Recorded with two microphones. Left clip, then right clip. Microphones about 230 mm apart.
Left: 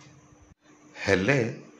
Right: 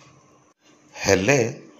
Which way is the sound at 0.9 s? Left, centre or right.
Centre.